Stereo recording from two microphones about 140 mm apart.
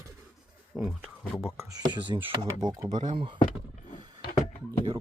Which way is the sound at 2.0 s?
35° right (ahead or behind).